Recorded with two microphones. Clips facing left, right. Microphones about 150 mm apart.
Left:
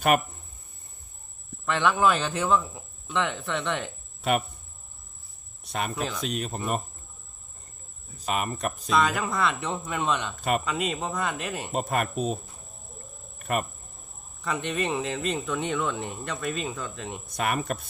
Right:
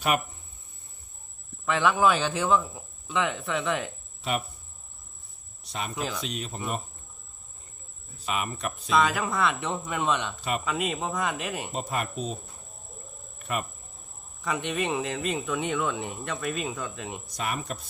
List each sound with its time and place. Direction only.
1.6 s speech: centre (ahead or behind)
4.2 s speech: 55° left (ahead or behind)
5.6 s speech: 55° left (ahead or behind)
5.9 s speech: centre (ahead or behind)
6.2 s speech: 50° left (ahead or behind)
8.2 s speech: 45° left (ahead or behind)
8.9 s speech: centre (ahead or behind)
11.7 s speech: 50° left (ahead or behind)
13.4 s speech: 50° left (ahead or behind)
14.4 s speech: centre (ahead or behind)
17.2 s speech: 60° left (ahead or behind)